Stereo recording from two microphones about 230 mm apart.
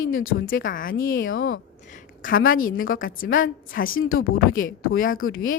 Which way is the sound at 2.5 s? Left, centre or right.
Left.